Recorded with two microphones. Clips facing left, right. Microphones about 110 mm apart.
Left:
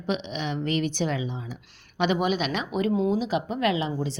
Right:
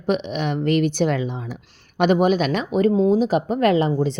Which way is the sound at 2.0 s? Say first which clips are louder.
Right 7 dB; 45° right (ahead or behind).